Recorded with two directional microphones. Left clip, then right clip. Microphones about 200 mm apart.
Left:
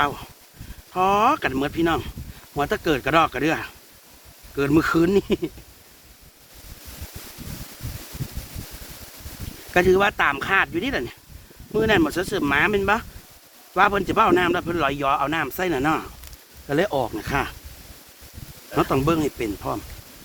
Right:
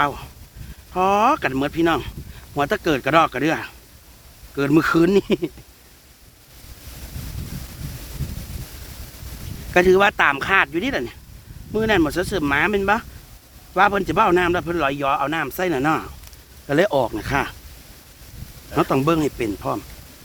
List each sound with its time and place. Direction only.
0.0 s a man's voice: 35° right (ahead or behind)
9.7 s a man's voice: 40° right (ahead or behind)
16.6 s speech: 50° right (ahead or behind)
18.7 s a man's voice: 35° right (ahead or behind)